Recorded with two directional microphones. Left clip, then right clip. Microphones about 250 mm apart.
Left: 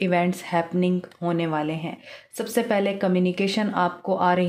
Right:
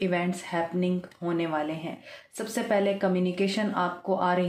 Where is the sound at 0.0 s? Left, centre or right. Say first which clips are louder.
Left 5 dB; left.